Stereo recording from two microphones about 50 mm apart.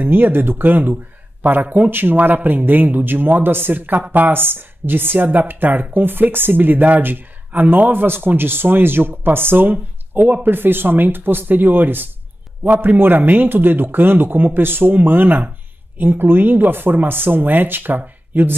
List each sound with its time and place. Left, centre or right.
0.0 s a man's voice: right